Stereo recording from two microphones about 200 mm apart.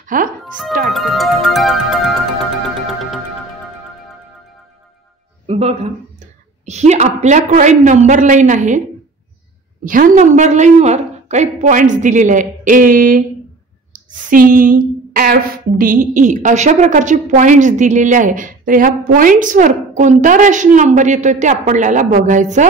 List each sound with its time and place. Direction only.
0.0 s speech: 40° right (ahead or behind)
0.4 s speech: centre (ahead or behind)
0.8 s music: centre (ahead or behind)
5.5 s a woman's voice: 30° right (ahead or behind)
9.8 s a woman's voice: 45° right (ahead or behind)